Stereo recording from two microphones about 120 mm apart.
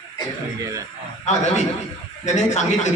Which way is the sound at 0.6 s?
25° right (ahead or behind).